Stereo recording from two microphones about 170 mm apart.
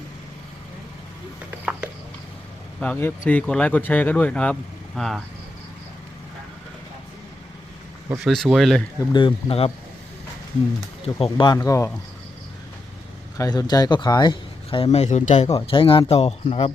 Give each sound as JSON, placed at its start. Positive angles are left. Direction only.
{"t": 2.8, "sound": "speech", "side_deg": 10}
{"t": 8.2, "sound": "speech", "side_deg": 0}
{"t": 9.1, "sound": "speech", "side_deg": 30}
{"t": 11.0, "sound": "speech", "side_deg": 30}
{"t": 13.3, "sound": "speech", "side_deg": 20}
{"t": 15.5, "sound": "speech", "side_deg": 30}